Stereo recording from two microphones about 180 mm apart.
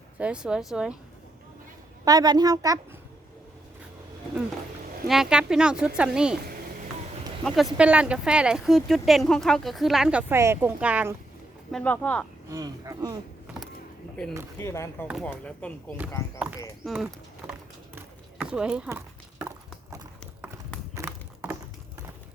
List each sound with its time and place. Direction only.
0.2 s speech: 5° right (ahead or behind)
2.0 s speech: 20° right (ahead or behind)
5.0 s speech: centre (ahead or behind)
7.4 s speech: centre (ahead or behind)
11.7 s speech: 10° left (ahead or behind)
12.5 s speech: 20° right (ahead or behind)
14.6 s speech: 15° left (ahead or behind); by 17.5 s 5° right (ahead or behind)
17.9 s clip-clop: 5° right (ahead or behind)
20.9 s a sound: 15° right (ahead or behind)